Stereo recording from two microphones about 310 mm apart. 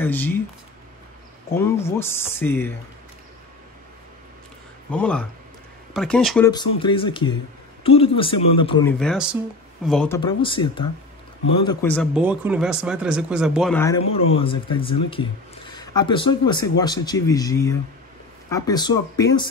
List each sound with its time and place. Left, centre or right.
0.0 s speech: centre
1.5 s speech: centre
4.9 s speech: centre
6.5 s speech: centre
9.0 s speech: centre
14.3 s speech: centre